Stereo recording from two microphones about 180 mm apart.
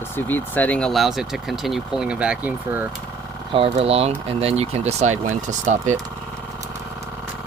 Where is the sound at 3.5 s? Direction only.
30° right (ahead or behind).